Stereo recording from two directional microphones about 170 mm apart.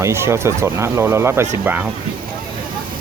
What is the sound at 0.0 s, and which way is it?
Speech, 15° right (ahead or behind).